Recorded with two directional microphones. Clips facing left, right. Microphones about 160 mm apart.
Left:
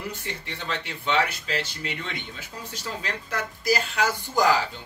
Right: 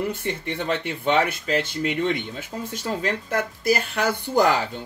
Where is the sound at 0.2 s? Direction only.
55° right (ahead or behind).